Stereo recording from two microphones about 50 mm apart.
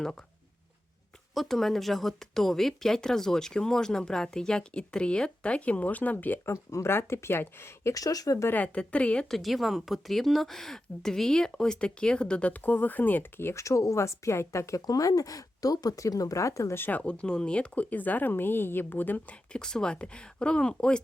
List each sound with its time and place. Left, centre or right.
1.3 s speech: centre; by 6.4 s left
6.4 s speech: left
6.9 s speech: left
8.5 s speech: left
9.3 s speech: centre; by 12.5 s left
12.6 s speech: left
13.5 s speech: left
16.0 s speech: left
16.9 s speech: left
17.9 s a woman's voice: left
19.5 s speech: centre